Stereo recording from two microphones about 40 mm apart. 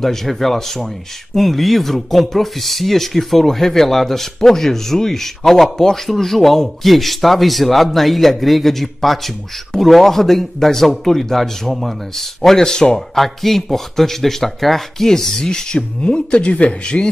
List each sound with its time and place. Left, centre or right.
0.0 s speech: centre
16.0 s speech: left